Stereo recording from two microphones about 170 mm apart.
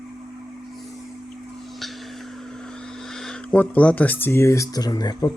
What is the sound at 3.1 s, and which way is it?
Speech, 5° left (ahead or behind).